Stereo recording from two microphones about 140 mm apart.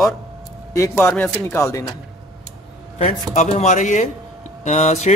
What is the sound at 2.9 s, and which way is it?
A man's voice, 55° left (ahead or behind).